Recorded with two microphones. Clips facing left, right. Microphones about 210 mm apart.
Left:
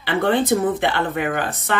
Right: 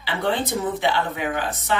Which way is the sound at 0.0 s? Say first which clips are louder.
Left 5 dB; 55° left (ahead or behind).